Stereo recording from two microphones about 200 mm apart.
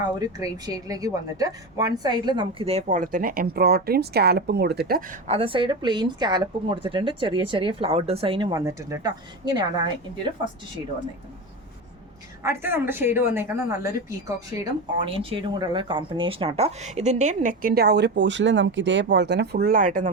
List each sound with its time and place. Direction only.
0.0 s a woman's voice: 20° right (ahead or behind); by 5.0 s 50° right (ahead or behind)
5.3 s a woman's voice: 25° right (ahead or behind)
12.4 s a woman's voice: 10° right (ahead or behind); by 20.1 s 40° right (ahead or behind)